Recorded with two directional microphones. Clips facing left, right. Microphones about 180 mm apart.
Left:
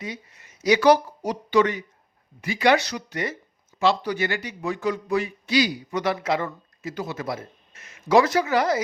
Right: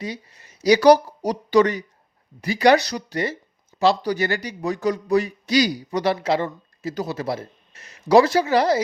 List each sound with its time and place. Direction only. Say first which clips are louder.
0.0 s a man's voice: right 4 dB; 35° right (ahead or behind)